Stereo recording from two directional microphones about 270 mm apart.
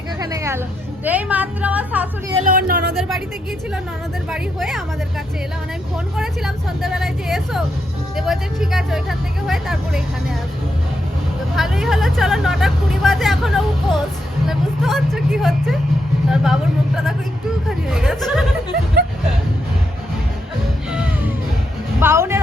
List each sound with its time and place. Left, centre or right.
0.2 s a sound: centre
1.0 s speech: centre
2.5 s speech: right
4.3 s speech: centre
6.1 s speech: centre
11.5 s speech: centre
22.0 s speech: centre